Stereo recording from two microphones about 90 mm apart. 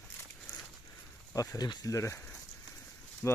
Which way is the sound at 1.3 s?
45° left (ahead or behind).